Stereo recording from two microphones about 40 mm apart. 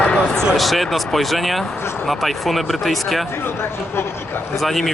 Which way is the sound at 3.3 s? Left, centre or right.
Left.